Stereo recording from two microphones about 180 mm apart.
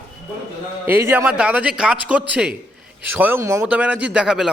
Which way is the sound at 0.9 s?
10° right (ahead or behind).